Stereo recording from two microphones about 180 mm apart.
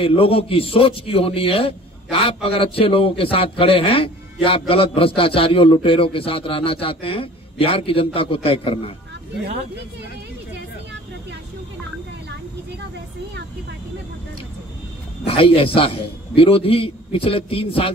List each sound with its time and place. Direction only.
0.0 s a man's voice: 30° left (ahead or behind)
15.2 s a man's voice: 30° left (ahead or behind)